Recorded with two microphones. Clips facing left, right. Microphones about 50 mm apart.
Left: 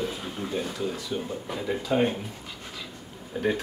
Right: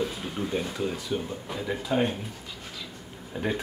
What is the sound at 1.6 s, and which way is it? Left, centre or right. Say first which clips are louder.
Speech: left 2 dB; centre.